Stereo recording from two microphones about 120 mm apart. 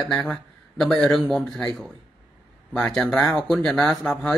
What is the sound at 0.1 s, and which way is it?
A man's voice, centre (ahead or behind).